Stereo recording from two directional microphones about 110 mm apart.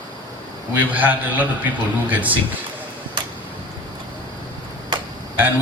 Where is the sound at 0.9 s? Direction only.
15° right (ahead or behind).